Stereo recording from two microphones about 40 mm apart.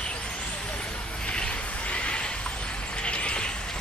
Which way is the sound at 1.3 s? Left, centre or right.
Left.